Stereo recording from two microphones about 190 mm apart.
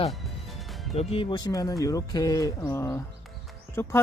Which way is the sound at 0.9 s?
30° left (ahead or behind).